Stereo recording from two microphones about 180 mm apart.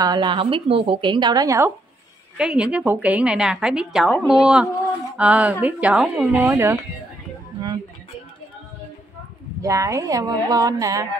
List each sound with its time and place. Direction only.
0.0 s a woman's voice: 25° right (ahead or behind)
2.3 s a woman's voice: 5° right (ahead or behind)
9.6 s a woman's voice: 15° right (ahead or behind)